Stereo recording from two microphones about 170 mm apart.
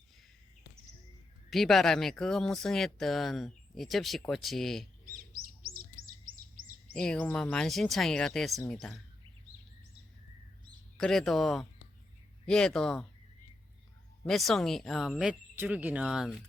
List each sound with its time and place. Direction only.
1.5 s speech: centre (ahead or behind)
5.3 s chirp: 55° right (ahead or behind)
6.9 s speech: 5° left (ahead or behind)
10.9 s speech: 5° left (ahead or behind)
14.3 s speech: centre (ahead or behind)